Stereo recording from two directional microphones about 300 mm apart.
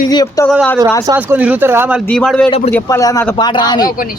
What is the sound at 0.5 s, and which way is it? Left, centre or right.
Speech, centre.